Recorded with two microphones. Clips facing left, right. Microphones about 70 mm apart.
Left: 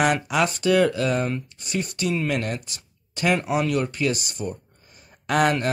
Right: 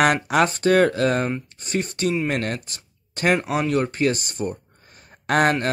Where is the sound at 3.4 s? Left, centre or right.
Right.